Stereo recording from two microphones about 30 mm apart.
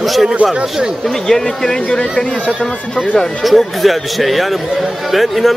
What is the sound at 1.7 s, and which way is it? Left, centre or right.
Speech, left.